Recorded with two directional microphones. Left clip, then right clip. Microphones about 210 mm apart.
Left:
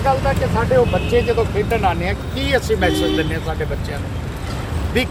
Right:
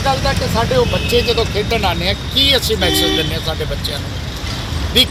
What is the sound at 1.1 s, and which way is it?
Speech, centre (ahead or behind).